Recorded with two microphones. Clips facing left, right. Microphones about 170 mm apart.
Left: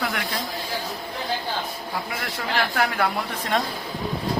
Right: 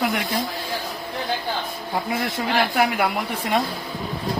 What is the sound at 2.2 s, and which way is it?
Speech, 15° right (ahead or behind).